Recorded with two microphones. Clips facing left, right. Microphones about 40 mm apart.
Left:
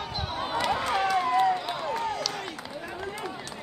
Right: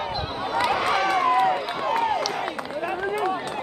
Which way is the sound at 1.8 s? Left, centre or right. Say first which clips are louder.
Right 7 dB; right.